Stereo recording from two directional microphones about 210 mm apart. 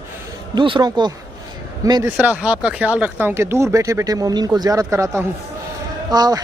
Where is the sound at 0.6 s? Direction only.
20° right (ahead or behind).